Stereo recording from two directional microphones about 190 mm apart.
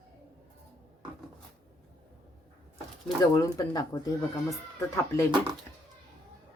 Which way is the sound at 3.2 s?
20° left (ahead or behind).